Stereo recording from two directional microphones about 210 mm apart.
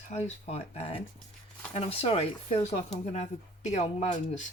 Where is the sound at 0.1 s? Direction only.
30° left (ahead or behind).